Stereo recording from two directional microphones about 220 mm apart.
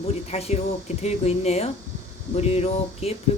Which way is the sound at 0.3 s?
30° left (ahead or behind).